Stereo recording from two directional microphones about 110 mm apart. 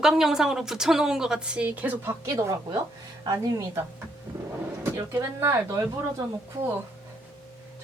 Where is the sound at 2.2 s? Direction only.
30° right (ahead or behind).